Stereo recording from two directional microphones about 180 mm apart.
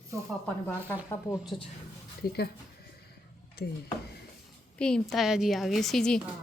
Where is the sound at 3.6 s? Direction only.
60° left (ahead or behind).